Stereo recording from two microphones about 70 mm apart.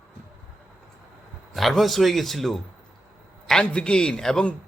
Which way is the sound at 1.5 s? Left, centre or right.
Centre.